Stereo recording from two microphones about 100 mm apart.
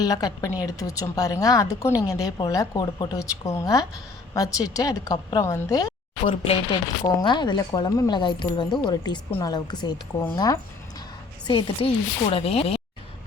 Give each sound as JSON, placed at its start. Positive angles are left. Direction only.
{"t": 0.0, "sound": "a woman's voice", "side_deg": 40}
{"t": 6.2, "sound": "speech", "side_deg": 70}
{"t": 6.7, "sound": "speech", "side_deg": 45}
{"t": 11.4, "sound": "speech", "side_deg": 55}
{"t": 12.2, "sound": "speech", "side_deg": 75}